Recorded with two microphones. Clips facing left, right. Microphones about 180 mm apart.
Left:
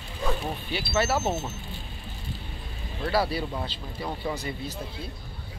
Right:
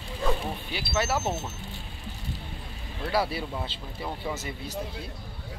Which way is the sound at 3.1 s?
20° right (ahead or behind).